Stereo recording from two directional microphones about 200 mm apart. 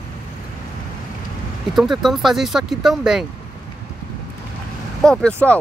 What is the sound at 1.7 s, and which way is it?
Speech, centre (ahead or behind).